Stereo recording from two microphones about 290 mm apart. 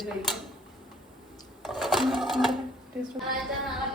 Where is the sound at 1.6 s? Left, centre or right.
Centre.